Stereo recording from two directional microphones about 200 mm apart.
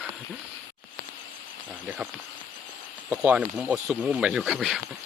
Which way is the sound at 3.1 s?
10° right (ahead or behind).